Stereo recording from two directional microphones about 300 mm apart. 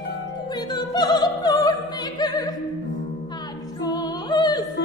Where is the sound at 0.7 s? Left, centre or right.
Centre.